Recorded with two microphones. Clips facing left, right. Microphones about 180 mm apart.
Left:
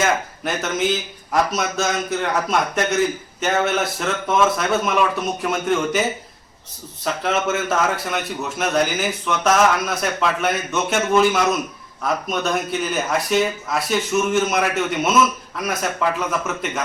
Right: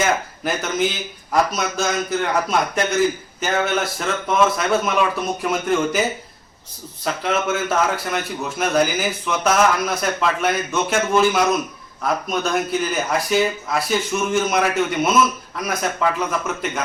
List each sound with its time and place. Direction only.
0.0 s a man's voice: centre (ahead or behind)